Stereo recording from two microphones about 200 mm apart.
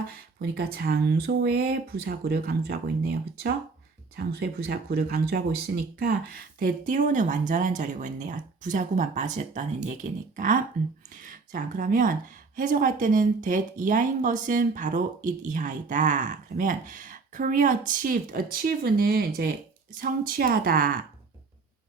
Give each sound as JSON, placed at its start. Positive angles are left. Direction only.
{"t": 0.1, "sound": "speech", "side_deg": -50}
{"t": 4.1, "sound": "speech", "side_deg": -50}